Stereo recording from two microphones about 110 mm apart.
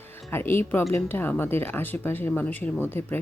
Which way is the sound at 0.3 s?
20° left (ahead or behind).